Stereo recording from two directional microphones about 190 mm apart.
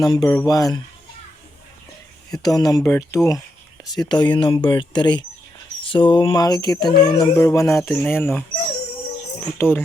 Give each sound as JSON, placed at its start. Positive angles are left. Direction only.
{"t": 0.0, "sound": "speech", "side_deg": 20}
{"t": 2.4, "sound": "speech", "side_deg": 20}
{"t": 4.1, "sound": "speech", "side_deg": 25}
{"t": 9.6, "sound": "speech", "side_deg": 10}